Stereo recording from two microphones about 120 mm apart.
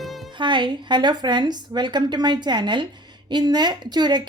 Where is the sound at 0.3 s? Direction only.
40° right (ahead or behind).